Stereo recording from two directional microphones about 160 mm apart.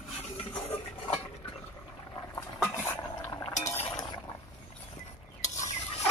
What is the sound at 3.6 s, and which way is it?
Chink, 15° left (ahead or behind).